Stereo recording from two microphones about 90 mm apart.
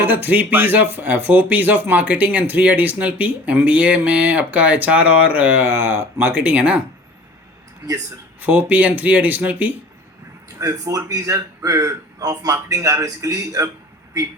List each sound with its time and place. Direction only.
0.0 s speech: 20° right (ahead or behind)
8.4 s speech: 20° right (ahead or behind)
10.6 s a man's voice: 40° right (ahead or behind)